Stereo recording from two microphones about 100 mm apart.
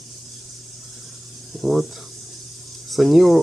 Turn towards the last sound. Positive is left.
turn(degrees=0)  # may be behind; listen again after turning